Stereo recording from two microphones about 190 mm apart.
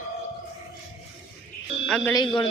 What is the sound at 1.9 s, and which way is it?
Speech, 10° left (ahead or behind).